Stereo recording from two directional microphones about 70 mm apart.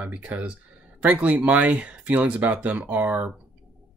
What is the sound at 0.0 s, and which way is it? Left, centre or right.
Speech, centre.